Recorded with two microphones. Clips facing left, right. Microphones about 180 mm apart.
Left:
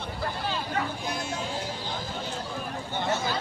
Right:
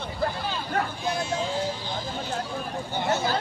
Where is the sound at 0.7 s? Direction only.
55° right (ahead or behind).